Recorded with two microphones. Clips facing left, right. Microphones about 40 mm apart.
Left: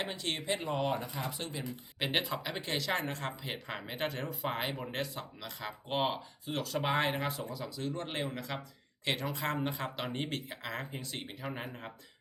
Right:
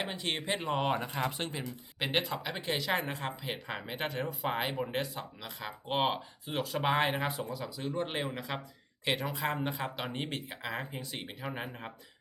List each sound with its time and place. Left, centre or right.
0.0 s speech: centre
0.3 s speech: right
2.0 s speech: centre